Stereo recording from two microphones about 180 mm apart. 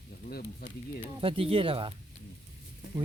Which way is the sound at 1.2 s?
30° right (ahead or behind).